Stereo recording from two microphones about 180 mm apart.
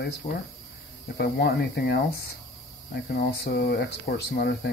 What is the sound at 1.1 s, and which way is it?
Speech, 60° left (ahead or behind).